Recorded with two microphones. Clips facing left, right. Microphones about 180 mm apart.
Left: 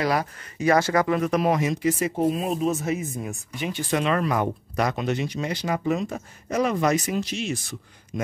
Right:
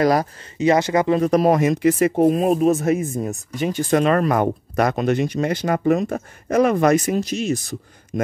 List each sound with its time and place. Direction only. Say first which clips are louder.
0.0 s speech: right 7 dB; 40° right (ahead or behind)
0.6 s speech: right 3 dB; 20° right (ahead or behind); by 1.6 s 40° right (ahead or behind)
1.6 s speech: right 7 dB; 60° right (ahead or behind)